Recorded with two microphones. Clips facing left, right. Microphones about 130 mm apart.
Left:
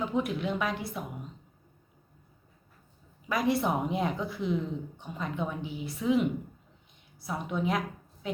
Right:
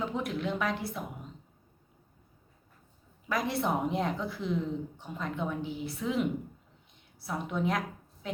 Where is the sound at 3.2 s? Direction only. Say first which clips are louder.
Left 3 dB; centre (ahead or behind).